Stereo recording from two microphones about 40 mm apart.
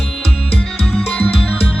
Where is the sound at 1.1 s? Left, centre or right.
Left.